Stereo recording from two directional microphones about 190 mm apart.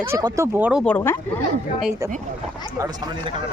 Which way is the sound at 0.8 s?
10° left (ahead or behind).